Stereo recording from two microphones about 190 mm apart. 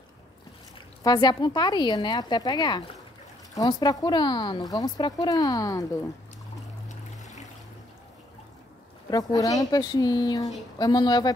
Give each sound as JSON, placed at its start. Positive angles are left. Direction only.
{"t": 1.0, "sound": "speech", "side_deg": 20}
{"t": 9.1, "sound": "speech", "side_deg": 20}